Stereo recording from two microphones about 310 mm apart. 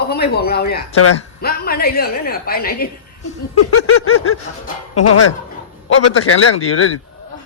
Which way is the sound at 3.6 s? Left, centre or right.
Left.